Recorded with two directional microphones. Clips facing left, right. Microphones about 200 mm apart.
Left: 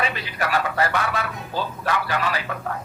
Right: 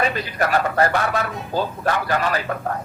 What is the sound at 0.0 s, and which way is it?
Speech, 45° right (ahead or behind).